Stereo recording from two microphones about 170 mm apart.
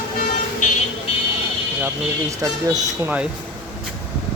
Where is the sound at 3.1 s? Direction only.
5° right (ahead or behind).